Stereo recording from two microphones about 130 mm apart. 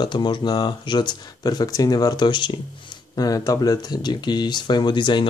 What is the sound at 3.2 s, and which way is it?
Speech, 25° left (ahead or behind).